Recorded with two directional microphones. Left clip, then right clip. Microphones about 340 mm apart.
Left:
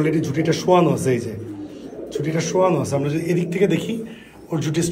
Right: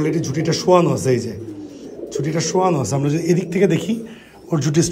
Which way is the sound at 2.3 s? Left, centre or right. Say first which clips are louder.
Even; right.